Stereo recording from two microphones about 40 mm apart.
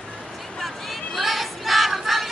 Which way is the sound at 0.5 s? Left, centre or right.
Centre.